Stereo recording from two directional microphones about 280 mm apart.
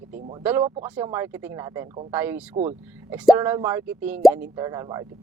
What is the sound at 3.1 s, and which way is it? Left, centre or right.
Speech, centre.